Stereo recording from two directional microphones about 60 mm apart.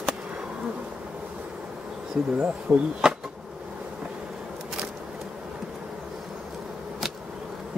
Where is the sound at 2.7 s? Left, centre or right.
Right.